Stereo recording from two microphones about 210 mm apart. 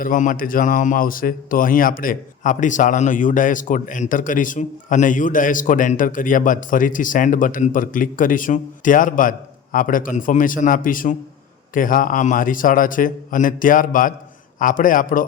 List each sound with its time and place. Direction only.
0.0 s a man's voice: 40° left (ahead or behind)